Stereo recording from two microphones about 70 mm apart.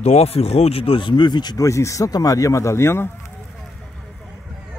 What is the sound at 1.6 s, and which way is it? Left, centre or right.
Speech, left.